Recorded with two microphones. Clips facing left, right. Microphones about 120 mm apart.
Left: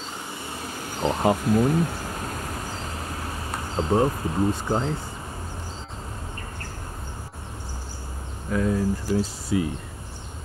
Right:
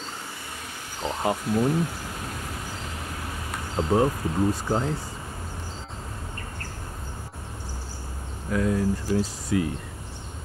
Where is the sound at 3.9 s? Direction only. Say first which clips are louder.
Even; 5° right (ahead or behind).